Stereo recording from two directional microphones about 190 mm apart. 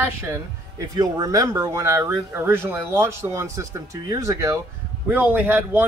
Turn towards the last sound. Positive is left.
turn(degrees=-10)  # may be behind; listen again after turning